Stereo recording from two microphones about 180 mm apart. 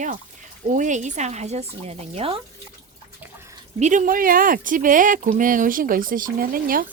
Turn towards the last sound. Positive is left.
turn(degrees=-55)  # may be behind; listen again after turning